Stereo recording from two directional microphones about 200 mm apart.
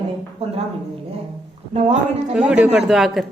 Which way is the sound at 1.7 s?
35° right (ahead or behind).